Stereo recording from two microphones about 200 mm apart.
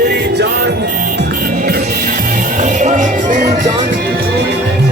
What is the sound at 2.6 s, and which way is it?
Music, 35° right (ahead or behind).